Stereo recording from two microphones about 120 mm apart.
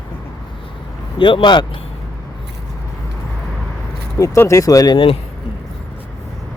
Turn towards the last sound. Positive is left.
turn(degrees=35)  # may be behind; listen again after turning